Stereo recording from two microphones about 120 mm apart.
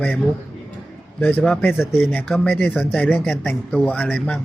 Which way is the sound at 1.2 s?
10° left (ahead or behind).